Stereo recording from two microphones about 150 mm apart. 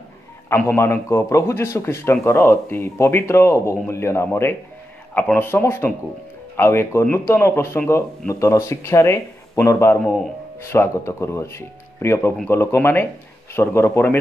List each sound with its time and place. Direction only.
0.5 s speech: 15° left (ahead or behind)